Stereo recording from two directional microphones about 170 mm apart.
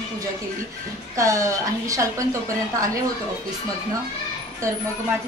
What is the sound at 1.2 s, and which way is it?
Speech, 20° right (ahead or behind).